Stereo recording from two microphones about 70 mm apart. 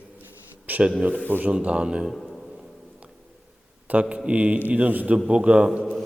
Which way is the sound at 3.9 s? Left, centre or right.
Right.